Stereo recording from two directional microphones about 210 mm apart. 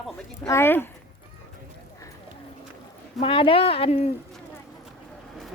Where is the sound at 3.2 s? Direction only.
25° left (ahead or behind).